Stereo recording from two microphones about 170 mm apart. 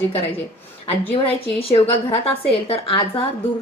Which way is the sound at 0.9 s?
35° left (ahead or behind).